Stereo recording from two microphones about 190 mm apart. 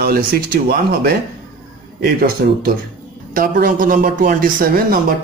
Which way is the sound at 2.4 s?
55° right (ahead or behind).